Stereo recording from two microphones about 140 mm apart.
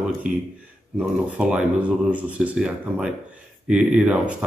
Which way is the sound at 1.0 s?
10° right (ahead or behind).